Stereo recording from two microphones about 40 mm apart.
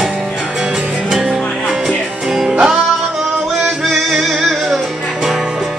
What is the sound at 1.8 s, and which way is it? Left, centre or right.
Music, centre.